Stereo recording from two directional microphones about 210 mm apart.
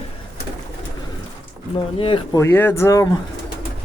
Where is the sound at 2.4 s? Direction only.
10° left (ahead or behind).